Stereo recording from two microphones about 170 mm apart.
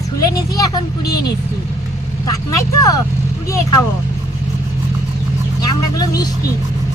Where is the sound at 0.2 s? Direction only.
20° left (ahead or behind).